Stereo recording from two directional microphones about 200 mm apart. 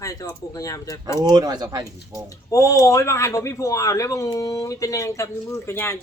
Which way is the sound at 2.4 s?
15° left (ahead or behind).